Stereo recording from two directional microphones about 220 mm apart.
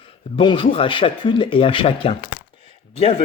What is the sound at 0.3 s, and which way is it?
Speech, 25° left (ahead or behind).